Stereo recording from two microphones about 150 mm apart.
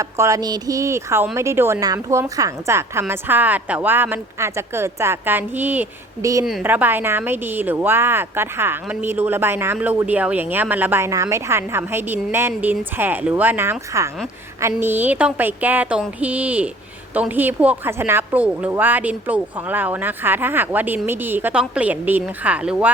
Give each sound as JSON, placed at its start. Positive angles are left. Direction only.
{"t": 0.0, "sound": "a woman's voice", "side_deg": -20}